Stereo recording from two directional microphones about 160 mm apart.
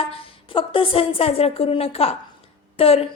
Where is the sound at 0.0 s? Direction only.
35° left (ahead or behind).